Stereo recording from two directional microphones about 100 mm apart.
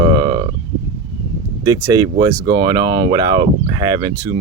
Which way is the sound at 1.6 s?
45° right (ahead or behind).